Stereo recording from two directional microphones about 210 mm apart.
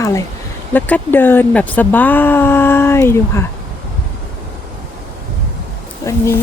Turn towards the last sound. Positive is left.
turn(degrees=15)  # may be behind; listen again after turning